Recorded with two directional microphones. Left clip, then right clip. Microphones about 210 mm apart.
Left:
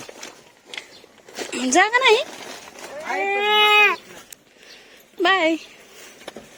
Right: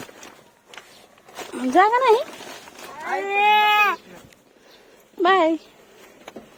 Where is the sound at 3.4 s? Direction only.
50° right (ahead or behind).